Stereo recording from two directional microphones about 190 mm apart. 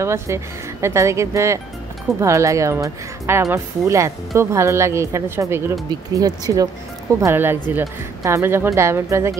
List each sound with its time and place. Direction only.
0.0 s speech: 15° right (ahead or behind)